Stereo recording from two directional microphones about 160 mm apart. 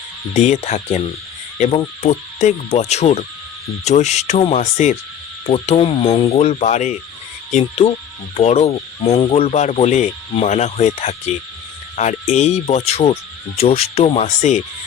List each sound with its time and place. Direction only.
0.3 s speech: 45° left (ahead or behind)